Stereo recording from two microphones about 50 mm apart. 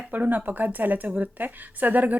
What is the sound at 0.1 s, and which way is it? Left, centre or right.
A woman's voice, right.